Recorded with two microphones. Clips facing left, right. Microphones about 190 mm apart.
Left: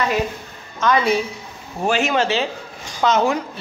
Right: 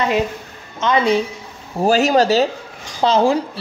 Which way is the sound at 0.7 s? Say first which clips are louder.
Right 2 dB; 25° right (ahead or behind).